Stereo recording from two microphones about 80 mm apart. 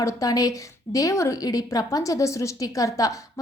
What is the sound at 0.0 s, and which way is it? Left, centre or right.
A woman's voice, left.